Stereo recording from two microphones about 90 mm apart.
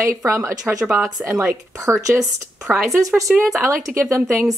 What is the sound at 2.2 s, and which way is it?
Speech, 5° right (ahead or behind).